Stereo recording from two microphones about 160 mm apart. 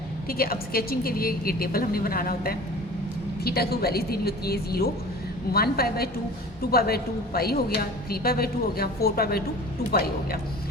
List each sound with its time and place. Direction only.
0.3 s a woman's voice: 65° left (ahead or behind)